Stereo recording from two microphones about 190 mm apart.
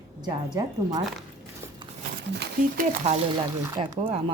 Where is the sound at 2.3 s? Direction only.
60° right (ahead or behind).